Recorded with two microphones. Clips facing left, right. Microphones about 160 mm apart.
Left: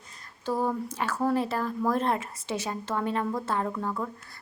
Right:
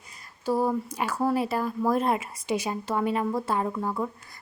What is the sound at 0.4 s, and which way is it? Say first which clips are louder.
A woman's voice: right 3 dB; 10° right (ahead or behind).